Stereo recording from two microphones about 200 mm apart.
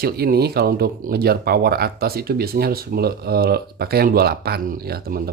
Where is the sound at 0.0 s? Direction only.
50° right (ahead or behind).